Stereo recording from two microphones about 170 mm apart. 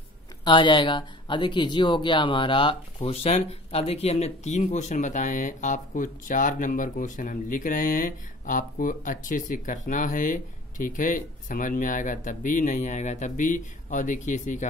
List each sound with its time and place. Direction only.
0.5 s speech: 25° left (ahead or behind); by 14.7 s 45° left (ahead or behind)